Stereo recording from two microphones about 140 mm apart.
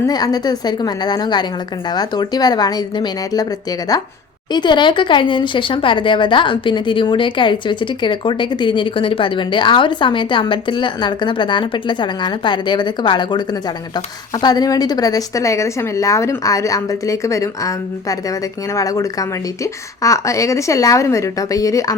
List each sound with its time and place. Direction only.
0.1 s a woman's voice: 30° left (ahead or behind)
4.5 s a woman's voice: 35° left (ahead or behind)